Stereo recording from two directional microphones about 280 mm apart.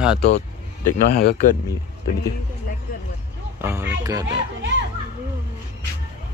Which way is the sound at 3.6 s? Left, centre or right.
Centre.